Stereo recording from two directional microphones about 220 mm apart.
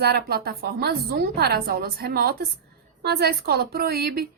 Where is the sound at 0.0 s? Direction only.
45° right (ahead or behind).